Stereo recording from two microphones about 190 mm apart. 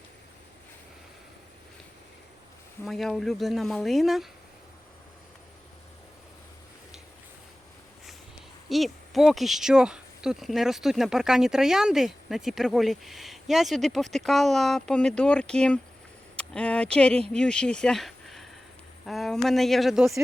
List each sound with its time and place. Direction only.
2.8 s speech: centre (ahead or behind)
8.7 s speech: centre (ahead or behind)